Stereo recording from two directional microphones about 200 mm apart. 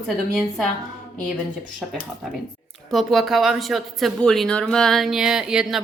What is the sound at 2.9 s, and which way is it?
Speech, centre (ahead or behind).